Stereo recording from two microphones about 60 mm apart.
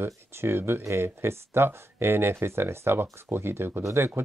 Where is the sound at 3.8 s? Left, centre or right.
Right.